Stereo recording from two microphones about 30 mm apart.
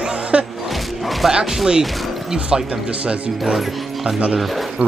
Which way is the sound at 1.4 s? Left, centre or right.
Centre.